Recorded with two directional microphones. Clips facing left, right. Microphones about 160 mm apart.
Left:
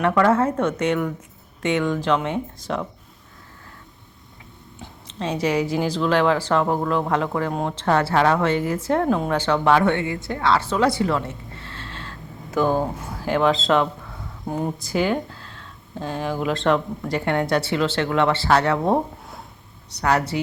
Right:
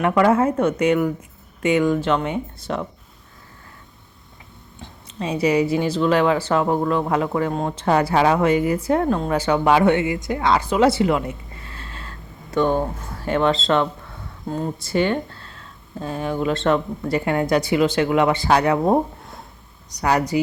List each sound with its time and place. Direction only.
0.0 s speech: 10° right (ahead or behind)
4.8 s speech: 5° right (ahead or behind)
7.9 s speech: 15° right (ahead or behind)
9.4 s speech: 10° right (ahead or behind)
14.4 s speech: 15° left (ahead or behind)
14.8 s speech: 5° left (ahead or behind)
19.2 s a sound: centre (ahead or behind)
20.0 s speech: 10° right (ahead or behind)